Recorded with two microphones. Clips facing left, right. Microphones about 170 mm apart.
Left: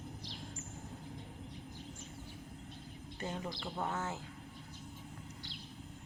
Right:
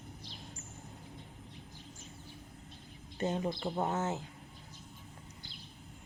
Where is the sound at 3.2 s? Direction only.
25° right (ahead or behind).